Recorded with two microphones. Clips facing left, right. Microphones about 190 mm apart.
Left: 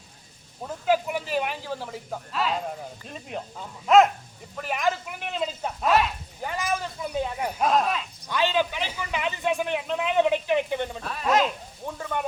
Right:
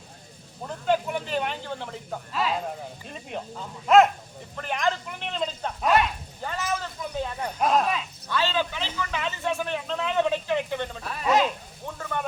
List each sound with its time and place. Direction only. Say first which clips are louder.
0.9 s a sound: left 1 dB; 5° left (ahead or behind)
3.1 s speech: even; centre (ahead or behind)
6.4 s speech: left 1 dB; 10° left (ahead or behind)
7.6 s speech: even; centre (ahead or behind)
8.3 s a man's voice: left 2 dB; 15° left (ahead or behind)
11.0 s speech: right 1 dB; 5° right (ahead or behind)
11.8 s a sound: left 2 dB; 15° left (ahead or behind)